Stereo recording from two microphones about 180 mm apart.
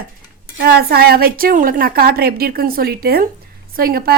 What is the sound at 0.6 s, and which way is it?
Speech, 60° right (ahead or behind).